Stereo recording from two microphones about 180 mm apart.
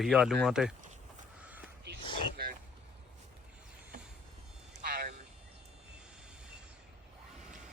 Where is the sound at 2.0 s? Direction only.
25° left (ahead or behind).